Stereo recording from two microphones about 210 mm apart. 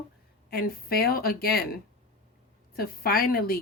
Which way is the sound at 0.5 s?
45° left (ahead or behind).